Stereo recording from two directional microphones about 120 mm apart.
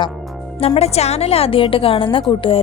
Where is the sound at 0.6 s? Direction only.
60° left (ahead or behind).